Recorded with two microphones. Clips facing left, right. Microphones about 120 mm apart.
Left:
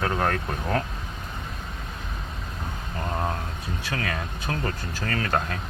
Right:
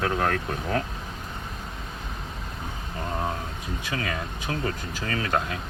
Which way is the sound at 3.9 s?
5° right (ahead or behind).